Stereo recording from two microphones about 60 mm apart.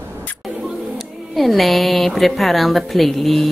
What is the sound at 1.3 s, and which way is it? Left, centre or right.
A woman's voice, centre.